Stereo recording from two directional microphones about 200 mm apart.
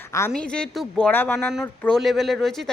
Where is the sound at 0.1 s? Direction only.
15° left (ahead or behind).